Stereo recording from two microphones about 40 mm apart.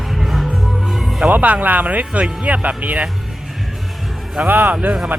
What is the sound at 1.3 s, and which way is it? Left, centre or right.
Speech, right.